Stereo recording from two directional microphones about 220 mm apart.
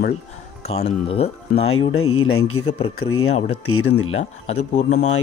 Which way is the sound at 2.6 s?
25° left (ahead or behind).